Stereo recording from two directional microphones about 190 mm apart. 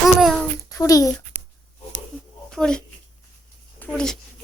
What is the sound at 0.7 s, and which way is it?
Speech, 15° left (ahead or behind).